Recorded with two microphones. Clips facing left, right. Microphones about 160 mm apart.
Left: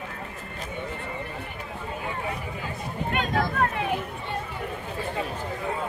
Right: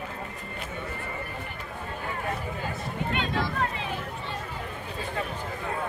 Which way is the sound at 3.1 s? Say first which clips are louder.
Left 4 dB; 50° left (ahead or behind).